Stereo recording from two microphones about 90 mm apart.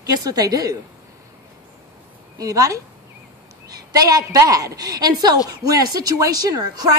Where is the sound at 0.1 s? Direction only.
45° right (ahead or behind).